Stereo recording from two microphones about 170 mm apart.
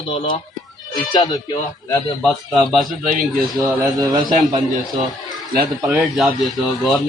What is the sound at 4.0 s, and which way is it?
Speech, 25° right (ahead or behind).